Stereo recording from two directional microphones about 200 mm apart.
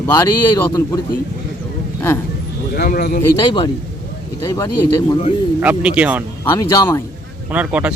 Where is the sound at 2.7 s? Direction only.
50° left (ahead or behind).